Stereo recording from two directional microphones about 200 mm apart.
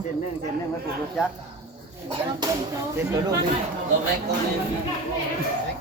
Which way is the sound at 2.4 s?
20° right (ahead or behind).